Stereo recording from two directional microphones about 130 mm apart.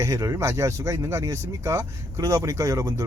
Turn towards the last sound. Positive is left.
turn(degrees=-25)  # may be behind; listen again after turning